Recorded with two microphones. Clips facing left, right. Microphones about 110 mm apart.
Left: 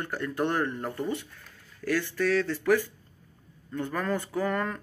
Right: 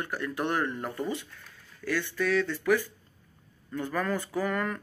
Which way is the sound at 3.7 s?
30° left (ahead or behind).